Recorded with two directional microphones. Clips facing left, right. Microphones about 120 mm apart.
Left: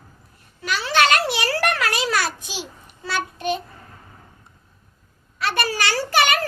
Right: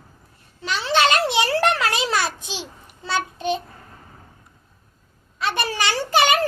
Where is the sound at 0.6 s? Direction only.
25° right (ahead or behind).